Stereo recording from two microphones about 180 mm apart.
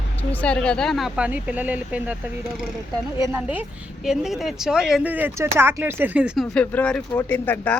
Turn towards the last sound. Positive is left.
turn(degrees=10)  # may be behind; listen again after turning